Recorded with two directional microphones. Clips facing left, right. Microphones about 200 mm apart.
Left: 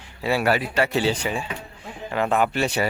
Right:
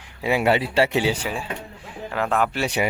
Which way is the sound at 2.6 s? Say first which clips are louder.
Even; 15° right (ahead or behind).